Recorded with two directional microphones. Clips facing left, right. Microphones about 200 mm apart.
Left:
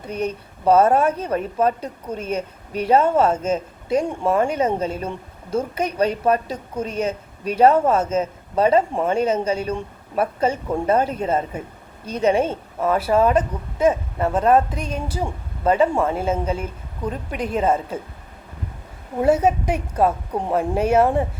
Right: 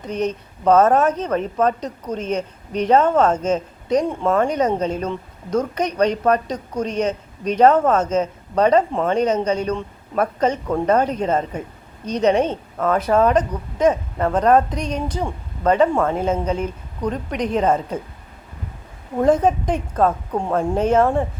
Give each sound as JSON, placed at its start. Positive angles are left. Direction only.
{"t": 0.0, "sound": "speech", "side_deg": 10}
{"t": 19.2, "sound": "speech", "side_deg": 10}